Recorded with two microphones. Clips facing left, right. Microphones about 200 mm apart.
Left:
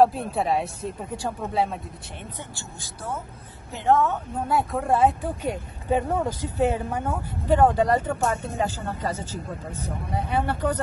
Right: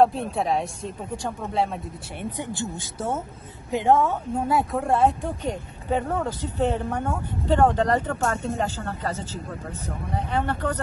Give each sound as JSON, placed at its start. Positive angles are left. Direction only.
{"t": 0.0, "sound": "speech", "side_deg": 0}
{"t": 2.3, "sound": "a woman's voice", "side_deg": -15}
{"t": 4.5, "sound": "speech", "side_deg": 0}